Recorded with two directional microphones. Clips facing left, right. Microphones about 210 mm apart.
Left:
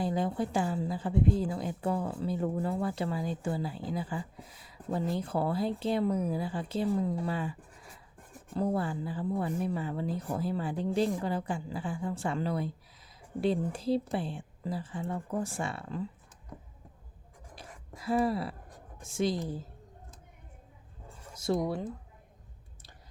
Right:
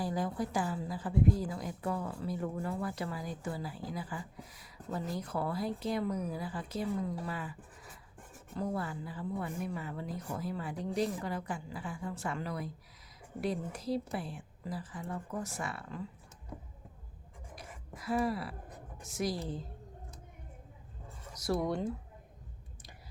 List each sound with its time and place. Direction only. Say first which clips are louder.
0.0 s speech: left 4 dB; 25° left (ahead or behind)
8.5 s a woman's voice: left 6 dB; 30° left (ahead or behind)
17.9 s speech: left 4 dB; 30° left (ahead or behind)
21.3 s speech: left 3 dB; 25° left (ahead or behind)
21.6 s speech: even; 5° left (ahead or behind)